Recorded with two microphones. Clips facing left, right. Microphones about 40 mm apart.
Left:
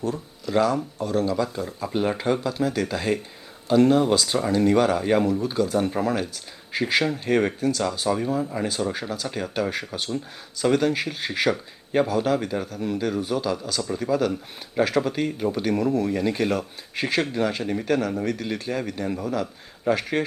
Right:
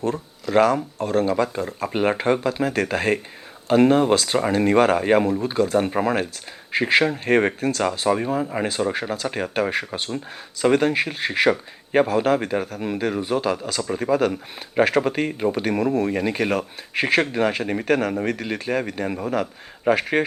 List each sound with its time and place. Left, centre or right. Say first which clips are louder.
0.0 s speech: right 3 dB; right